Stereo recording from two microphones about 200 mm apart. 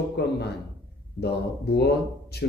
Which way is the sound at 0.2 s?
55° left (ahead or behind).